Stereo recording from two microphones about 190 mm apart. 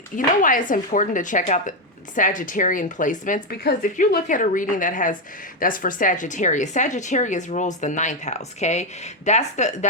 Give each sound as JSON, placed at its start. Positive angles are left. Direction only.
{"t": 0.4, "sound": "speech", "side_deg": 45}